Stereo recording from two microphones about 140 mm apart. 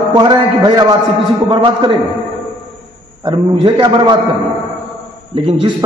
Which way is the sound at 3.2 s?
30° right (ahead or behind).